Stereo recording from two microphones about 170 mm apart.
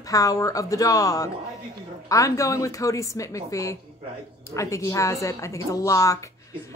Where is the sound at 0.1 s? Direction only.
20° left (ahead or behind).